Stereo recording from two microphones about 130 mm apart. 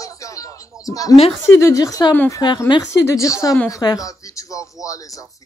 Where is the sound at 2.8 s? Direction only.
25° left (ahead or behind).